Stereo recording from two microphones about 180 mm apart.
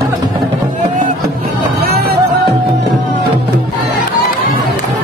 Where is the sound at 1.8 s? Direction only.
60° right (ahead or behind).